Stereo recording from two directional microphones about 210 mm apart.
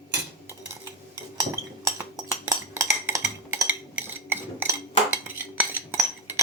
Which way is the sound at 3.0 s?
15° right (ahead or behind).